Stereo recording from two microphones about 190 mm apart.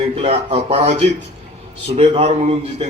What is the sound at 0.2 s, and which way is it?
A man's voice, 30° right (ahead or behind).